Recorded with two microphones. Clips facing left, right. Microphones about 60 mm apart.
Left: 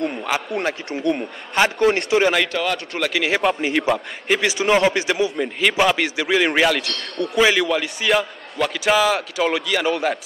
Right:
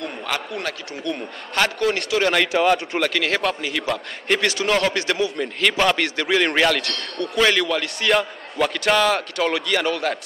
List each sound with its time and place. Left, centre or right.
0.6 s a man's voice: left
2.2 s speech: centre
3.1 s a man's voice: centre
3.6 s a man's voice: left
3.9 s a man's voice: centre